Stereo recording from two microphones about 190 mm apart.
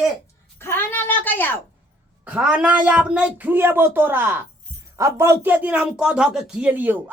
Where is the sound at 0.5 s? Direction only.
10° left (ahead or behind).